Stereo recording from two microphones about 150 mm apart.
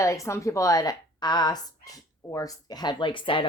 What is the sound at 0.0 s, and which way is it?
A woman's voice, 20° left (ahead or behind).